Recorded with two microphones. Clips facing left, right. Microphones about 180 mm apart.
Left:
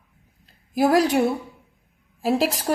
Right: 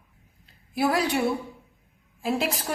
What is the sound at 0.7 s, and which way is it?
Speech, 40° left (ahead or behind).